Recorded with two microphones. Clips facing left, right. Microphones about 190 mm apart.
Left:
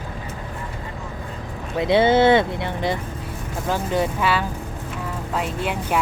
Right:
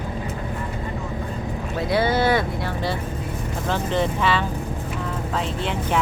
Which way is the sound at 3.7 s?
10° left (ahead or behind).